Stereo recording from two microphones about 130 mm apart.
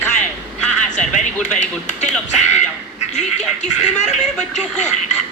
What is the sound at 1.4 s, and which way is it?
Speech, 65° left (ahead or behind).